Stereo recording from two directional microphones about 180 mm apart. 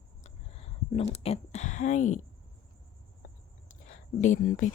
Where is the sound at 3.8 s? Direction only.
45° left (ahead or behind).